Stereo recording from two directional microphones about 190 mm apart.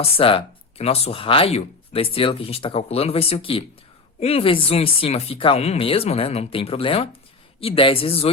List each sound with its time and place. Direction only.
0.0 s speech: 30° left (ahead or behind)